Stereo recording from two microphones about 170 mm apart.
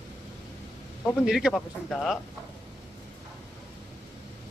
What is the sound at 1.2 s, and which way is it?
Speech, 5° right (ahead or behind).